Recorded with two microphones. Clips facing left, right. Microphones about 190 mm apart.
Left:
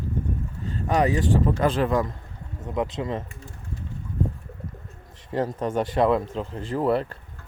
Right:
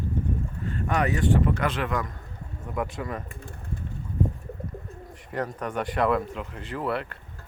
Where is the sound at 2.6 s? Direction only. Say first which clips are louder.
Left 4 dB; 20° left (ahead or behind).